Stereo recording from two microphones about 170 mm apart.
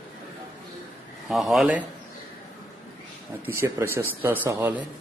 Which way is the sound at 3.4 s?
15° right (ahead or behind).